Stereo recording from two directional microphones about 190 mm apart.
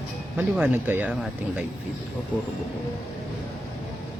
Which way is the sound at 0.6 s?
10° right (ahead or behind).